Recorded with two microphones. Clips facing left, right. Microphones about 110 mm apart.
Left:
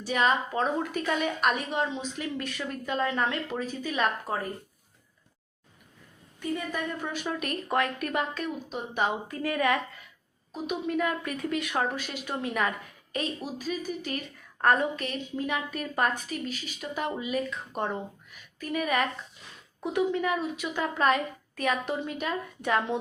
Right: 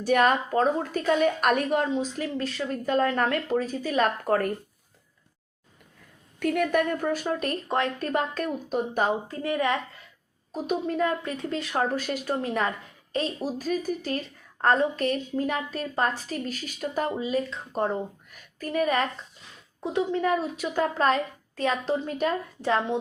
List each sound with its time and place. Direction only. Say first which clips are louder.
0.0 s speech: right 4 dB; 50° right (ahead or behind)
4.3 s speech: right 8 dB; 65° right (ahead or behind)
6.4 s speech: right 8 dB; 75° right (ahead or behind); by 9.1 s 45° right (ahead or behind)
9.2 s a woman's voice: right 1 dB; 25° right (ahead or behind)
10.5 s a woman's voice: right 2 dB; 40° right (ahead or behind)
15.0 s a woman's voice: right 6 dB; 40° right (ahead or behind)
18.3 s a sound: right 2 dB; 45° right (ahead or behind)
19.8 s a woman's voice: right 1 dB; 25° right (ahead or behind)
22.7 s a woman's voice: right 2 dB; 25° right (ahead or behind)